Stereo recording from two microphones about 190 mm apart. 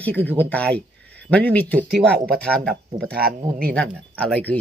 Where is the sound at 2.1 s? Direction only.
55° right (ahead or behind).